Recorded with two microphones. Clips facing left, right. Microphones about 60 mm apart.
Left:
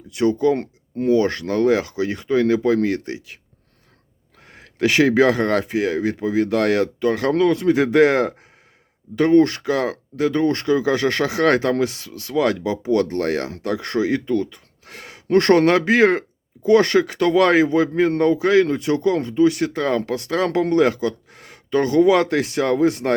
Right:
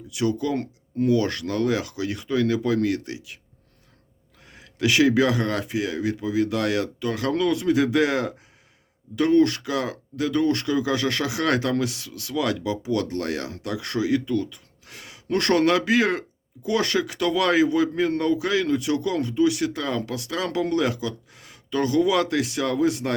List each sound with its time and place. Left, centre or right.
0.1 s speech: left
4.4 s speech: left